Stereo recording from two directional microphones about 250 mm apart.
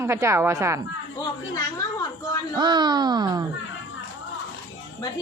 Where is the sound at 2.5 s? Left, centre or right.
Centre.